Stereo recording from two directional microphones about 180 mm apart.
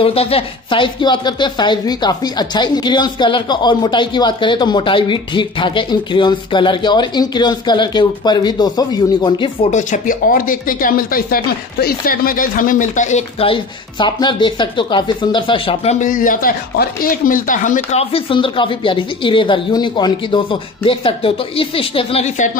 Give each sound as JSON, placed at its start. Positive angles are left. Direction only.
{"t": 0.0, "sound": "speech", "side_deg": 35}
{"t": 9.7, "sound": "speech", "side_deg": 45}
{"t": 18.1, "sound": "speech", "side_deg": 30}